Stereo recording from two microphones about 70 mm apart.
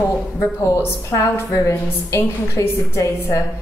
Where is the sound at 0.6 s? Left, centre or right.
Left.